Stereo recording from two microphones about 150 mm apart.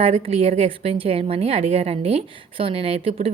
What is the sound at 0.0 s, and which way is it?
A woman's voice, 40° right (ahead or behind).